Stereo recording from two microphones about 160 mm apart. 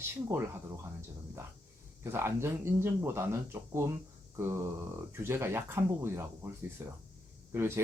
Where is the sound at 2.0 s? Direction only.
15° right (ahead or behind).